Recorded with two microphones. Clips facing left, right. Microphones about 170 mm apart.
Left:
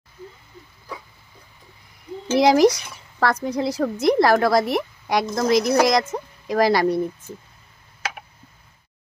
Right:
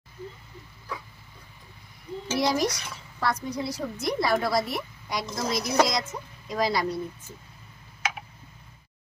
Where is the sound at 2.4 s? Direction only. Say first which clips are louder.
Left 11 dB; 90° left.